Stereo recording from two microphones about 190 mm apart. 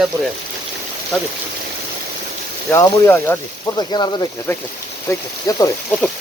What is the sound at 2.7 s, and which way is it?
Speech, 10° left (ahead or behind).